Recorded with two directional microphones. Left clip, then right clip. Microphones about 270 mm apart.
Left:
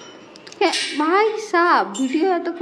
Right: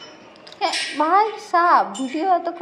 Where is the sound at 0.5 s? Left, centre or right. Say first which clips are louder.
Left 2 dB; centre.